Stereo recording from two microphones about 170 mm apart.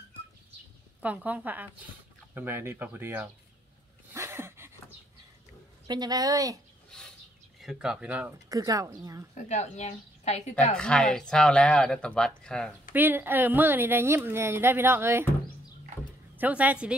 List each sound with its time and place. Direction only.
1.0 s a woman's voice: 10° right (ahead or behind)
4.1 s a sound: 15° right (ahead or behind)
5.9 s a woman's voice: 25° right (ahead or behind)
6.9 s a sound: 5° left (ahead or behind)
7.6 s speech: 5° right (ahead or behind)
8.5 s a woman's voice: 20° right (ahead or behind)
9.3 s a woman's voice: 45° left (ahead or behind)
10.8 s speech: 5° left (ahead or behind)
12.9 s a woman's voice: 10° right (ahead or behind)
16.3 s a woman's voice: 10° right (ahead or behind)